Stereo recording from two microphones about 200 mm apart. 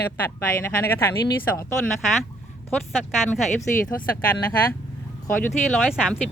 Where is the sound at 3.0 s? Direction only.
Centre (ahead or behind).